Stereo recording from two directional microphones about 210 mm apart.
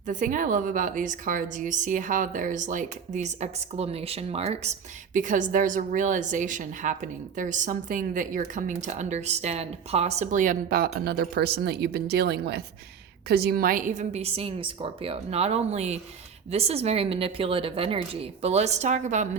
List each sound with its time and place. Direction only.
0.1 s a woman's voice: 40° right (ahead or behind)